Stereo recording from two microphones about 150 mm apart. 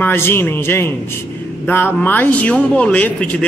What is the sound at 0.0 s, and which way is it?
A man's voice, 15° left (ahead or behind).